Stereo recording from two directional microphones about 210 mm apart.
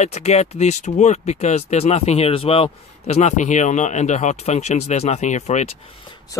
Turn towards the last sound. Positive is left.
turn(degrees=20)  # may be behind; listen again after turning